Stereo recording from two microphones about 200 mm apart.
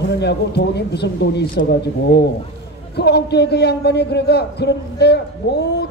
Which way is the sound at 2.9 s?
55° left (ahead or behind).